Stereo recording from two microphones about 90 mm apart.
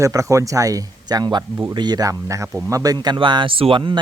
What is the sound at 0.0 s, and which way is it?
Speech, 35° right (ahead or behind).